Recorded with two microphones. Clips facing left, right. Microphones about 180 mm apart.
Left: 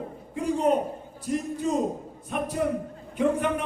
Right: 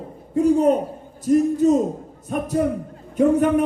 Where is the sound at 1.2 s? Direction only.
45° right (ahead or behind).